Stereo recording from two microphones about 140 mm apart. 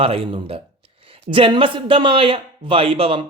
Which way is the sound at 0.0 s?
45° right (ahead or behind).